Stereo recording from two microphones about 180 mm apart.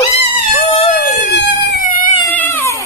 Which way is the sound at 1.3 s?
70° left (ahead or behind).